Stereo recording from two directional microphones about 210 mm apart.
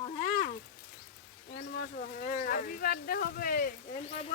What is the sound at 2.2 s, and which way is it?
Speech, 40° left (ahead or behind).